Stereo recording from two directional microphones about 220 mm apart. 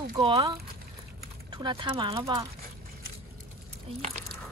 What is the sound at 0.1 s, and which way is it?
Speech, 25° right (ahead or behind).